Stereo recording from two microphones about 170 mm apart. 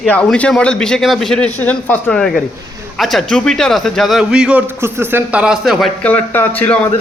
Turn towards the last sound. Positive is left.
turn(degrees=10)  # may be behind; listen again after turning